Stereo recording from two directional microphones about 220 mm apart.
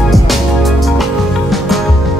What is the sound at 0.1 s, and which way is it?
Music, centre (ahead or behind).